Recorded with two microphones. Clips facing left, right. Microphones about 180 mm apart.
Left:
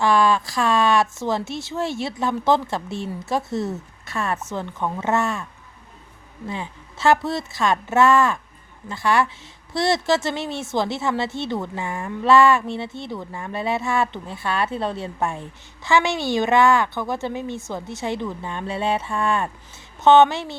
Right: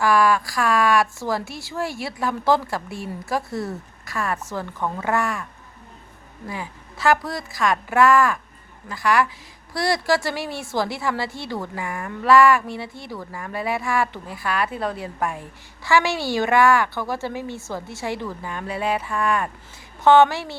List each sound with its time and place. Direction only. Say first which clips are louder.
0.0 s speech: even; 25° left (ahead or behind)
6.5 s speech: left 1 dB; 25° left (ahead or behind)